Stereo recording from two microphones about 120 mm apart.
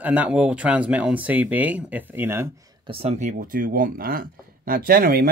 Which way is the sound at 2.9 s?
50° right (ahead or behind).